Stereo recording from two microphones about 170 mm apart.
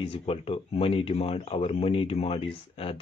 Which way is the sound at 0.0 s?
35° left (ahead or behind).